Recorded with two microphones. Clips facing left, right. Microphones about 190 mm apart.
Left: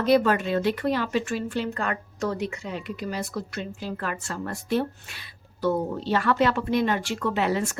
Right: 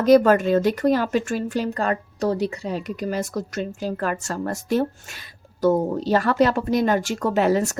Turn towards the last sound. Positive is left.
turn(degrees=-40)  # may be behind; listen again after turning